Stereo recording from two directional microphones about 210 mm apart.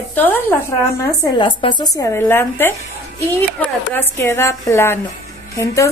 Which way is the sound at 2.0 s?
10° left (ahead or behind).